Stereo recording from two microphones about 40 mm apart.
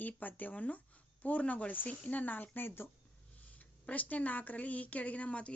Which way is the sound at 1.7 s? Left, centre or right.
Left.